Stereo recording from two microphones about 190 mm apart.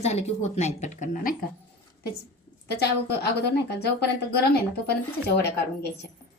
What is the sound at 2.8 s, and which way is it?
A woman's voice, 60° left (ahead or behind).